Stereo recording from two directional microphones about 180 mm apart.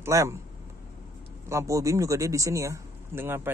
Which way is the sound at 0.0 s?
15° right (ahead or behind).